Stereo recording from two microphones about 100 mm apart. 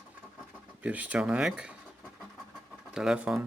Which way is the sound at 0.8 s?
15° right (ahead or behind).